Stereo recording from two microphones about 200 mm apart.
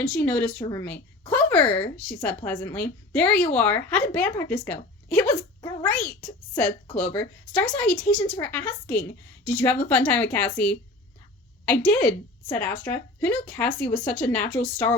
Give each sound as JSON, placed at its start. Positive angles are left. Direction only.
{"t": 0.0, "sound": "speech", "side_deg": 5}